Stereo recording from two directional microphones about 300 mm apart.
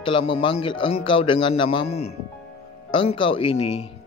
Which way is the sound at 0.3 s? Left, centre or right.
Centre.